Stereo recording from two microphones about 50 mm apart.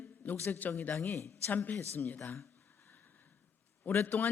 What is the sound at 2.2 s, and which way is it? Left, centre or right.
Speech, left.